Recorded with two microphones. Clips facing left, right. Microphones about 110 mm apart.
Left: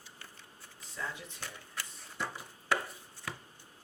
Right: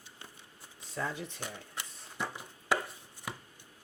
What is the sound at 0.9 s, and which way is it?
Speech, 55° right (ahead or behind).